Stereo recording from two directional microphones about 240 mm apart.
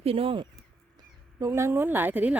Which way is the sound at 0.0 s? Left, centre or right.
Right.